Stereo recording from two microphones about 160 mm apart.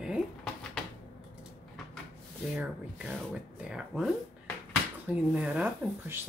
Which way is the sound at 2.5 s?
5° right (ahead or behind).